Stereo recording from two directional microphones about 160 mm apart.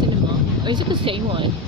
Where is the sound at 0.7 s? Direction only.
30° right (ahead or behind).